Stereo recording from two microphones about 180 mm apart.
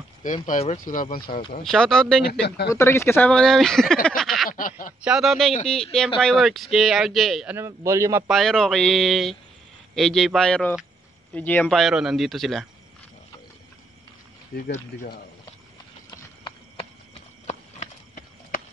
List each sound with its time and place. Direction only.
0.2 s speech: 45° left (ahead or behind)
1.6 s speech: 5° left (ahead or behind)
2.4 s speech: 65° left (ahead or behind)
2.7 s speech: 15° left (ahead or behind)
4.5 s a sound: 50° left (ahead or behind)
5.0 s speech: centre (ahead or behind)
7.5 s a man's voice: 15° right (ahead or behind)
8.3 s speech: centre (ahead or behind)
17.5 s a sound: 40° left (ahead or behind)